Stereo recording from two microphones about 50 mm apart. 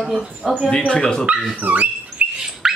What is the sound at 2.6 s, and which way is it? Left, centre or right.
Squawk, centre.